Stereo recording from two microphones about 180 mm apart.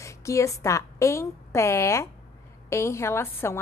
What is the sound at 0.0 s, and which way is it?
A woman's voice, 15° left (ahead or behind).